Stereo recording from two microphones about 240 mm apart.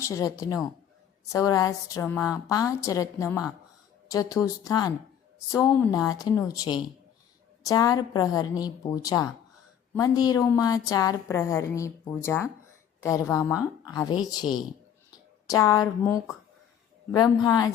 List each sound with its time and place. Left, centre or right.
0.0 s a woman's voice: centre
15.4 s a woman's voice: centre